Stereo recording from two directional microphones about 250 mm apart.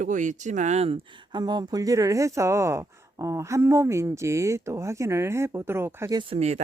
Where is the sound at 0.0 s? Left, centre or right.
Right.